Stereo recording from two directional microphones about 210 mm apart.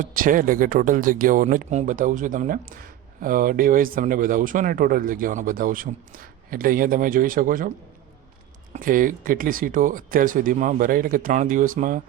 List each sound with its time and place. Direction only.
0.0 s speech: 40° right (ahead or behind)
8.7 s speech: 40° right (ahead or behind)